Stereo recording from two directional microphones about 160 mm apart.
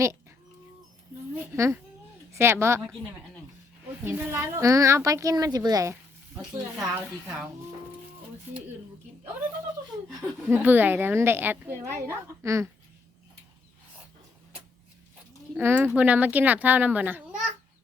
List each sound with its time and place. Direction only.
1.4 s speech: 15° right (ahead or behind)
4.0 s a woman's voice: 15° right (ahead or behind)
8.5 s speech: 15° right (ahead or behind)
10.5 s a woman's voice: 10° right (ahead or behind)
15.5 s speech: 10° right (ahead or behind)